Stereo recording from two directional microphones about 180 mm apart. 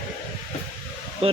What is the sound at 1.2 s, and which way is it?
Speech, 35° right (ahead or behind).